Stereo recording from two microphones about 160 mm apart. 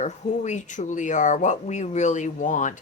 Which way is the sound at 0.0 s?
50° left (ahead or behind).